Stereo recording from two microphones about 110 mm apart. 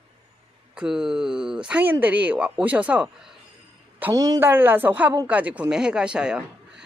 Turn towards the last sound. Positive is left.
turn(degrees=-10)  # may be behind; listen again after turning